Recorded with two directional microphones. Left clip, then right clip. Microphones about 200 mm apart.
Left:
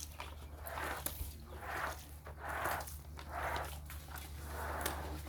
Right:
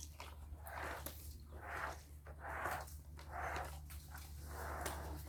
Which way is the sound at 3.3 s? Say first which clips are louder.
Left 4 dB; 50° left (ahead or behind).